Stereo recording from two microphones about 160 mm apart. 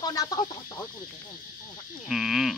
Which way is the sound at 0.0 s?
25° left (ahead or behind).